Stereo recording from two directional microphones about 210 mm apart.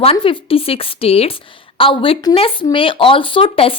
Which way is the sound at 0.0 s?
25° left (ahead or behind).